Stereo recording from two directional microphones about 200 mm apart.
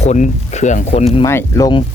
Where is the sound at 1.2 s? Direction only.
15° left (ahead or behind).